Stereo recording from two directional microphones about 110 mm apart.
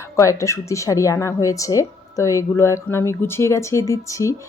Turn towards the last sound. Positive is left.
turn(degrees=30)  # may be behind; listen again after turning